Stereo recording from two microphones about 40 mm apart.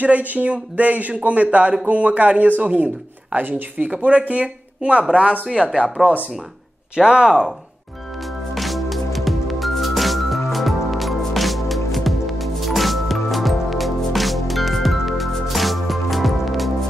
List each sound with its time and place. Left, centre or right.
0.0 s speech: right; by 7.5 s centre
8.5 s music: centre